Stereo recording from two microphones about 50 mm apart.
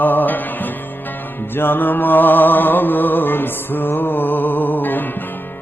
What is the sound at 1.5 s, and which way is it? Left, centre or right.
Music, left.